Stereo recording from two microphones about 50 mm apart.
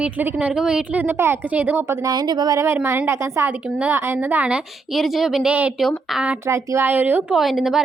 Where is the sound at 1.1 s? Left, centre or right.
Right.